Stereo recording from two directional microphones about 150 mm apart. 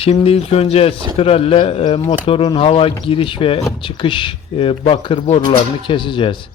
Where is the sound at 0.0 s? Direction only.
40° left (ahead or behind).